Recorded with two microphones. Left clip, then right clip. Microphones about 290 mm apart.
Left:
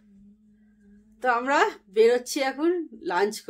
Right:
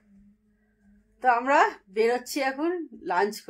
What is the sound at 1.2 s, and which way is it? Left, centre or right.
A woman's voice, centre.